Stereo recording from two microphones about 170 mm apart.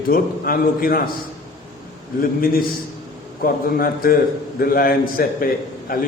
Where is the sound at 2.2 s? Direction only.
60° left (ahead or behind).